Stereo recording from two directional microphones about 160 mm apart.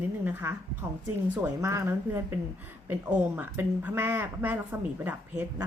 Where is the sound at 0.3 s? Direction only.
10° right (ahead or behind).